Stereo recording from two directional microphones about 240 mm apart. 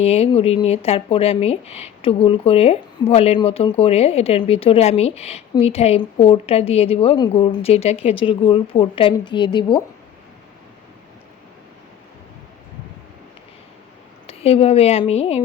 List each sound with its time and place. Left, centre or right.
0.0 s speech: left
14.3 s speech: left